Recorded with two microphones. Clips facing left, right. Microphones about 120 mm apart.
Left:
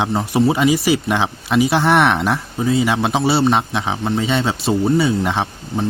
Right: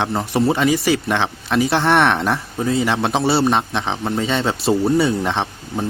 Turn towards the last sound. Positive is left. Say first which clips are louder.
# left 2 dB
turn(degrees=5)  # may be behind; listen again after turning